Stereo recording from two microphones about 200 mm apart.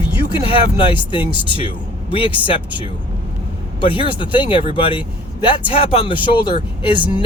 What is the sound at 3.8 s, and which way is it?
Speech, 25° left (ahead or behind).